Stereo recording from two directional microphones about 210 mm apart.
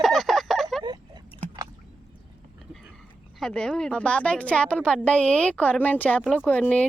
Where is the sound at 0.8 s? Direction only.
20° right (ahead or behind).